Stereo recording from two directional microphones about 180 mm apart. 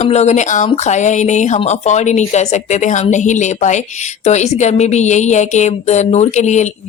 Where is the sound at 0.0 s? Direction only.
40° left (ahead or behind).